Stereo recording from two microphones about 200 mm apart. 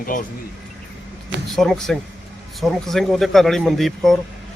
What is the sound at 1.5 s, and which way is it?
Speech, centre (ahead or behind).